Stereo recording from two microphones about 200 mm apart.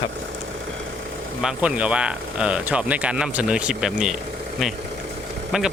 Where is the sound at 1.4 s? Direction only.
5° right (ahead or behind).